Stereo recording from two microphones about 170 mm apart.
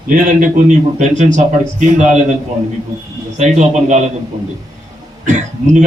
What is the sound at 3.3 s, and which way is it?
Speech, 45° right (ahead or behind).